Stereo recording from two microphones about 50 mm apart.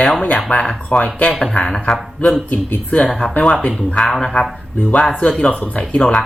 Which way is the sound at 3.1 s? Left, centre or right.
Left.